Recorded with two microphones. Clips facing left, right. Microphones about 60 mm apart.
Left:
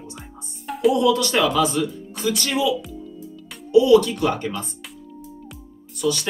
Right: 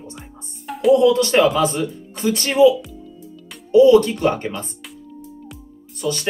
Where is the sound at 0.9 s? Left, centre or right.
Right.